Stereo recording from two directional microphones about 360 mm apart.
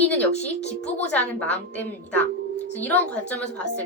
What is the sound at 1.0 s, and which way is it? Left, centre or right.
Speech, centre.